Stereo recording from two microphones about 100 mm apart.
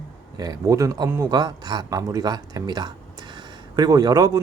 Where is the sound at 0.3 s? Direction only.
35° right (ahead or behind).